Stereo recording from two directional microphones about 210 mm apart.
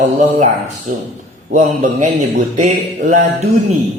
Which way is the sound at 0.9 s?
35° right (ahead or behind).